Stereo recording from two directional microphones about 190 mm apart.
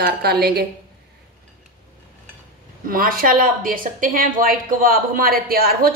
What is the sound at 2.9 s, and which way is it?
A woman's voice, 50° right (ahead or behind).